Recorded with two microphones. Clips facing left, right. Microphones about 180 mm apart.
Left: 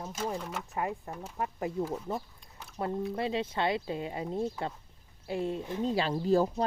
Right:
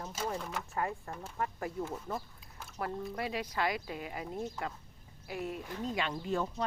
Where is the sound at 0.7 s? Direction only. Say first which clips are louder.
Left 2 dB; 15° left (ahead or behind).